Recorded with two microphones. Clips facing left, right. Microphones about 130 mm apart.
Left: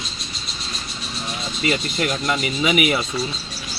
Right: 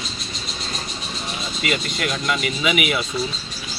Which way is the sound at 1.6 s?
35° left (ahead or behind).